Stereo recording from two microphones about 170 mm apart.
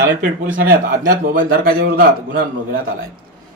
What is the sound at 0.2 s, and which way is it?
Speech, 55° right (ahead or behind).